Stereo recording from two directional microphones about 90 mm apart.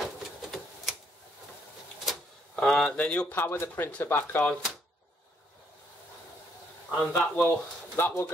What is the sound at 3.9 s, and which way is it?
Speech, 20° left (ahead or behind).